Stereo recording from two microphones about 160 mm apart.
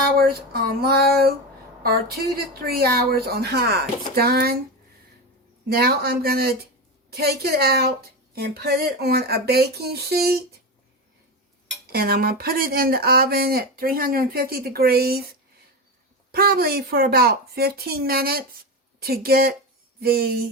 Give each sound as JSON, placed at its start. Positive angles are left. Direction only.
{"t": 0.2, "sound": "speech", "side_deg": -70}
{"t": 5.6, "sound": "speech", "side_deg": -75}
{"t": 11.9, "sound": "speech", "side_deg": -75}